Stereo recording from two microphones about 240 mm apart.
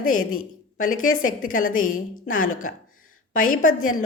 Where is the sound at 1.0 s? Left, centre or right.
Left.